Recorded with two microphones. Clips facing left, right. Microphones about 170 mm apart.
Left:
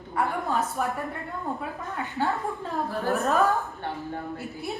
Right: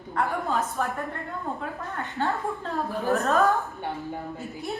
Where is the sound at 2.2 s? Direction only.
10° left (ahead or behind).